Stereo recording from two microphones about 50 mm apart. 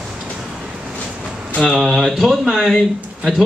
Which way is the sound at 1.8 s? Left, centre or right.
Centre.